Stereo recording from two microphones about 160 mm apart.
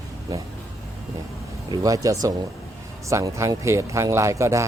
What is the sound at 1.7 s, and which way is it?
Speech, 20° right (ahead or behind).